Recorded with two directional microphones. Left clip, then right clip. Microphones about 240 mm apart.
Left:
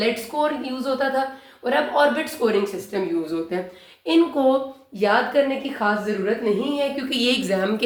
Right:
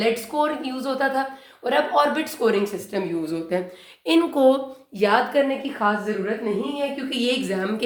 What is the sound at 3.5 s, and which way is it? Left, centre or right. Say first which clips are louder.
A woman's voice: right 2 dB; right.